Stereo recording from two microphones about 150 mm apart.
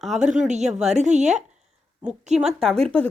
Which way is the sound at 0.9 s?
50° right (ahead or behind).